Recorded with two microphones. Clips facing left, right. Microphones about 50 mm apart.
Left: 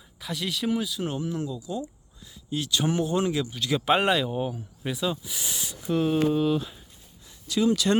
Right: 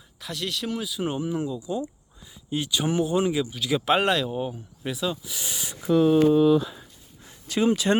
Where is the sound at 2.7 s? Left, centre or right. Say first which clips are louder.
Right 1 dB; centre.